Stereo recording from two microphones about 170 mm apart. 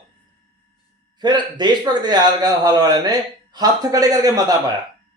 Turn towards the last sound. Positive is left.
turn(degrees=-20)  # may be behind; listen again after turning